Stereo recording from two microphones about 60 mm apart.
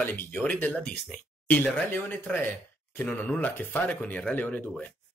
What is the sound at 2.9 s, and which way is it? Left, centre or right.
Speech, left.